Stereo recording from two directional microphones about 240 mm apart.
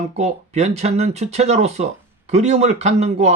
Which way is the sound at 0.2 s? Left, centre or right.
Right.